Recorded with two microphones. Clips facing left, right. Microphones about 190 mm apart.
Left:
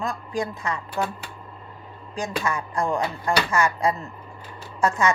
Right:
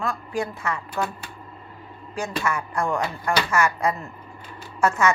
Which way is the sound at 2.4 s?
35° left (ahead or behind).